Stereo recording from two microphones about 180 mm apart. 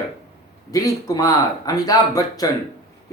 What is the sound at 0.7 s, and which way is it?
Speech, 20° left (ahead or behind).